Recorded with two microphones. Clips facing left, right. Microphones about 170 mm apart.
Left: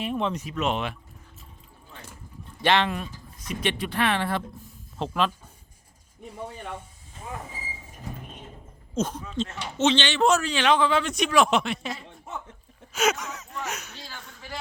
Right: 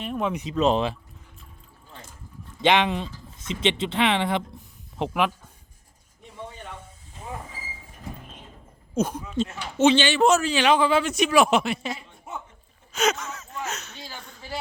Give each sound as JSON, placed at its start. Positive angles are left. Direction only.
{"t": 0.0, "sound": "speech", "side_deg": 0}
{"t": 0.3, "sound": "a man's voice", "side_deg": -15}
{"t": 0.5, "sound": "speech", "side_deg": -35}
{"t": 2.6, "sound": "a man's voice", "side_deg": -15}
{"t": 9.0, "sound": "a man's voice", "side_deg": -10}
{"t": 13.9, "sound": "a sound", "side_deg": -20}